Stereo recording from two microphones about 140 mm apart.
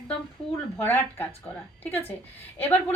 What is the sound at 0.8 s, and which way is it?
Speech, 15° left (ahead or behind).